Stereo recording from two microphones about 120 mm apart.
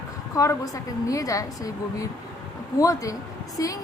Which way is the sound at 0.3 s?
30° left (ahead or behind).